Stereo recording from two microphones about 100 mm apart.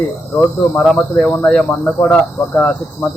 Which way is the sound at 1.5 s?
15° left (ahead or behind).